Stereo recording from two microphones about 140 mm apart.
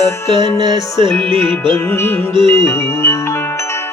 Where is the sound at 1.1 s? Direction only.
5° left (ahead or behind).